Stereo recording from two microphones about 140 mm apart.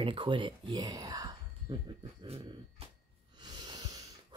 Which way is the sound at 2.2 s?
45° right (ahead or behind).